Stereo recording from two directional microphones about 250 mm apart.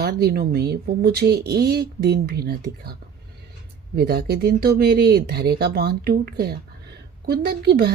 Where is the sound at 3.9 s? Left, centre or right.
Right.